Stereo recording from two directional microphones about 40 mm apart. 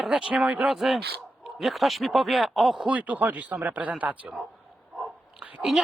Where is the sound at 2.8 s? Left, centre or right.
Right.